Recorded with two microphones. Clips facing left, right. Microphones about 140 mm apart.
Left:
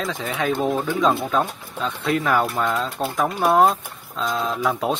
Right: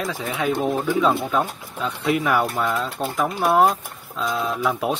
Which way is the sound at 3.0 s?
25° left (ahead or behind).